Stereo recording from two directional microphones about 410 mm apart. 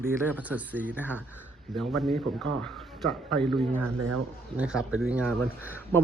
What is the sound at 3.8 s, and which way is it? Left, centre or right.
Speech, right.